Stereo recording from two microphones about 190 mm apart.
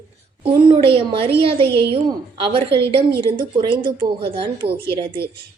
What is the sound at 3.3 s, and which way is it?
A woman's voice, 25° right (ahead or behind).